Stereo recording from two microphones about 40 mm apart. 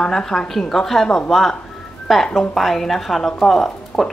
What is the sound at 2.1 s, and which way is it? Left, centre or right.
Speech, centre.